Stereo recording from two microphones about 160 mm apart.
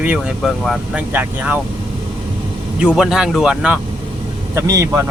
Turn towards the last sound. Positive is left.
turn(degrees=-20)  # may be behind; listen again after turning